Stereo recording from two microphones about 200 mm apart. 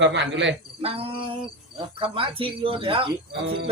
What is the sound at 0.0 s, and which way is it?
Cricket, 65° right (ahead or behind).